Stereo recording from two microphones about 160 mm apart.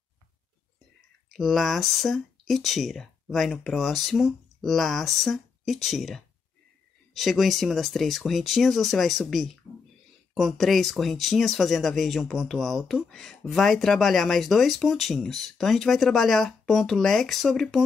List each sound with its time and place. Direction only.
1.3 s speech: centre (ahead or behind)